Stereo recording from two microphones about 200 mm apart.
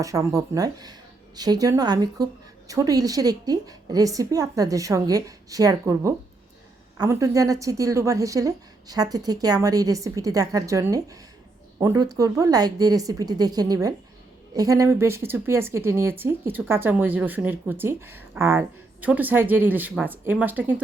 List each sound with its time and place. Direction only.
0.0 s a woman's voice: 15° right (ahead or behind)